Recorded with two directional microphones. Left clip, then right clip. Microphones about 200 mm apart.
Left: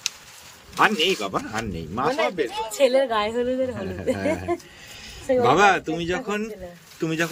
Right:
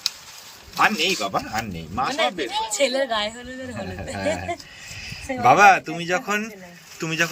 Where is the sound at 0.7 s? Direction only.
10° left (ahead or behind).